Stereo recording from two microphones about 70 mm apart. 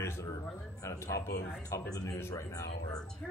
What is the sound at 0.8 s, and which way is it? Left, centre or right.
Speech, left.